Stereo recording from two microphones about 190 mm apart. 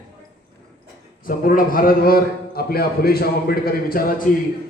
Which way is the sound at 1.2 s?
45° left (ahead or behind).